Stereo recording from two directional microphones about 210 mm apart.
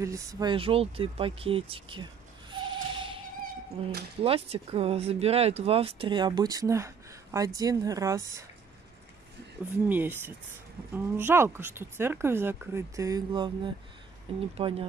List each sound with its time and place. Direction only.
0.0 s speech: 15° right (ahead or behind)
2.5 s a sound: 25° right (ahead or behind)
3.8 s speech: 25° right (ahead or behind)
9.8 s speech: 10° right (ahead or behind); by 14.9 s 25° right (ahead or behind)